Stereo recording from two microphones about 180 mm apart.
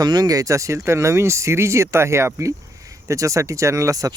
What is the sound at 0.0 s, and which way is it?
Speech, 20° right (ahead or behind).